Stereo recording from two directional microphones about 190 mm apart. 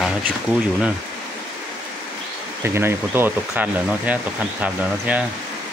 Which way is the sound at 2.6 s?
10° right (ahead or behind).